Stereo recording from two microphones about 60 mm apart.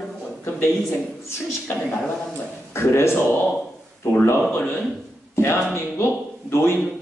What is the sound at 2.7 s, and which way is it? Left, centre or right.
Speech, left.